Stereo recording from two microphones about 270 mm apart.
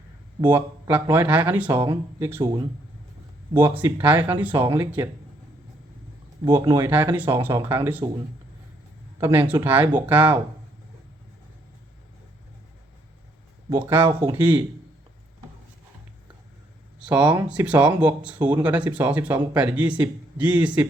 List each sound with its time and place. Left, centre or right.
0.4 s speech: centre
6.4 s speech: centre
9.2 s speech: centre
13.7 s speech: centre
17.0 s speech: centre